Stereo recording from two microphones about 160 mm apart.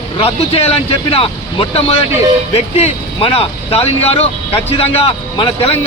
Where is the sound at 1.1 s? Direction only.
35° left (ahead or behind).